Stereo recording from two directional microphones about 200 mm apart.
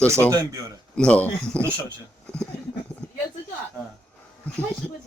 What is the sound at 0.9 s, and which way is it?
Speech, 5° left (ahead or behind).